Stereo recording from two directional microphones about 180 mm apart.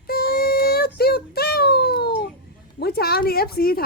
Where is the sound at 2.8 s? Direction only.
60° left (ahead or behind).